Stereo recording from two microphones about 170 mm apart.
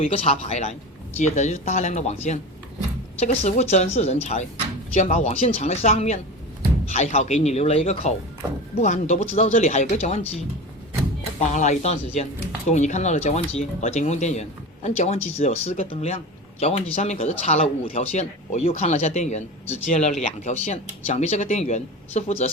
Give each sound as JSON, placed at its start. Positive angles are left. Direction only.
{"t": 0.0, "sound": "speech", "side_deg": 35}